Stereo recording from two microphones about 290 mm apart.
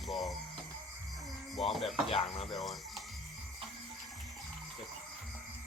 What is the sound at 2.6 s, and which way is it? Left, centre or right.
Speech, centre.